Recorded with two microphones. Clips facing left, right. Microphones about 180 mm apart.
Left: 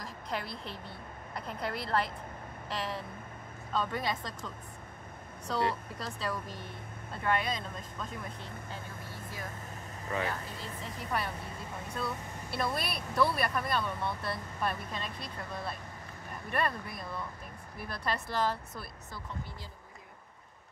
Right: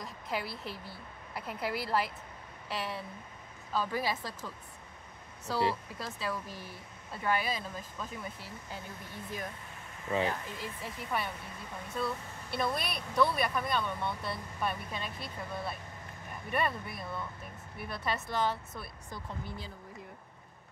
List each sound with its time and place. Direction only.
0.0 s speech: 5° right (ahead or behind)
5.5 s speech: 5° right (ahead or behind)
10.1 s speech: 20° right (ahead or behind)
11.0 s speech: centre (ahead or behind)